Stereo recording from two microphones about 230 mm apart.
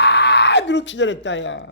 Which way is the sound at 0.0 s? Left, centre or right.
Left.